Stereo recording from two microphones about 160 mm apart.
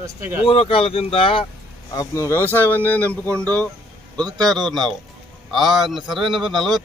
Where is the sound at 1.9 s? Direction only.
20° left (ahead or behind).